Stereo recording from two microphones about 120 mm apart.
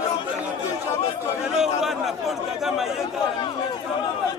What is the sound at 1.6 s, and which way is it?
Chatter, 5° right (ahead or behind).